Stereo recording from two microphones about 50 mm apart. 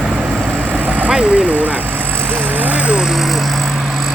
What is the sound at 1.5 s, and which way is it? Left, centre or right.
Vehicle, right.